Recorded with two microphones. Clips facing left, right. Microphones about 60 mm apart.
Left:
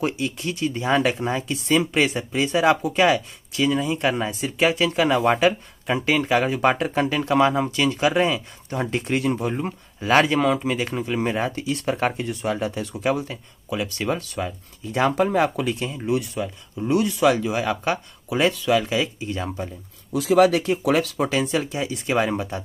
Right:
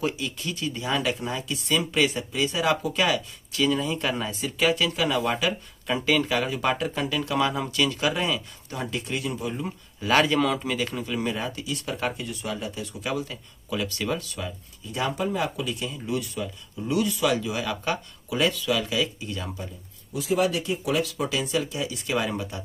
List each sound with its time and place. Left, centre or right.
0.0 s speech: left
3.5 s speech: centre; by 5.5 s left
5.9 s speech: left
12.9 s speech: left
20.1 s speech: left